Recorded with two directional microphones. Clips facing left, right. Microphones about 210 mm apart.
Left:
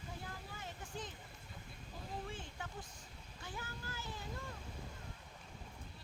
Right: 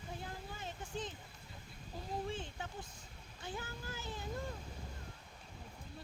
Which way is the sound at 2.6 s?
25° right (ahead or behind).